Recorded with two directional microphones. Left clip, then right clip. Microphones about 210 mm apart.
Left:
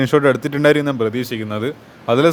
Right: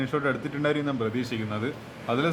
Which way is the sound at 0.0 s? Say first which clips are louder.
Left 13 dB; 55° left (ahead or behind).